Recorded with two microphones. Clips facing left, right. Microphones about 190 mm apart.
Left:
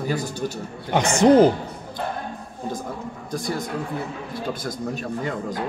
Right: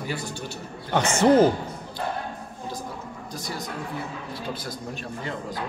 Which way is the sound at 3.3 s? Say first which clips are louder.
Left 8 dB; 50° left (ahead or behind).